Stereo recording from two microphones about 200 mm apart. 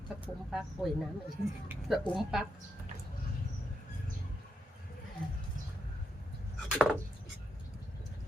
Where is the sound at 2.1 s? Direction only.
5° right (ahead or behind).